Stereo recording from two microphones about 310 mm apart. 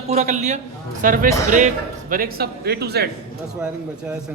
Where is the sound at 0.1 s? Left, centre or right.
Right.